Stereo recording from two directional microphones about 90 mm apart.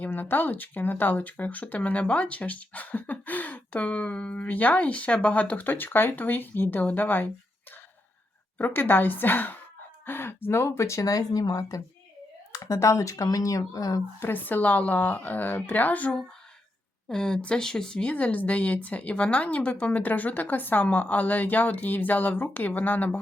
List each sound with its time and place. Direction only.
0.0 s speech: 20° left (ahead or behind)
8.5 s speech: 20° left (ahead or behind); by 14.0 s 40° left (ahead or behind)
14.2 s speech: 20° left (ahead or behind)